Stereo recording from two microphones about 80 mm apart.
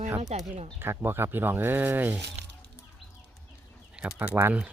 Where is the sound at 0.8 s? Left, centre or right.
Right.